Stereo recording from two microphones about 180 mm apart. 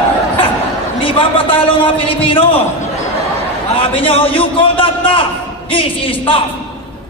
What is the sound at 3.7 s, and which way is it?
A man's voice, 30° left (ahead or behind).